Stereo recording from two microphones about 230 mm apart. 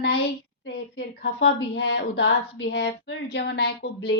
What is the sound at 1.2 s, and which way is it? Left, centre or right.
A woman's voice, left.